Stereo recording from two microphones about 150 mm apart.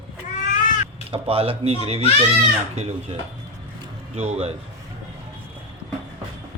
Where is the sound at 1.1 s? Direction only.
40° right (ahead or behind).